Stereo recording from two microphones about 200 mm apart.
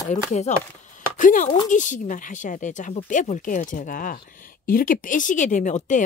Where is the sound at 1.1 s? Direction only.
40° left (ahead or behind).